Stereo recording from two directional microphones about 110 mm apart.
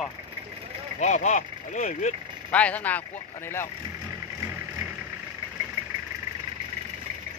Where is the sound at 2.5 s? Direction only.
15° left (ahead or behind).